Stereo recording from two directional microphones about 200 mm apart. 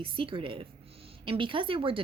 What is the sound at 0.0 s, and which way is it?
Speech, 25° right (ahead or behind).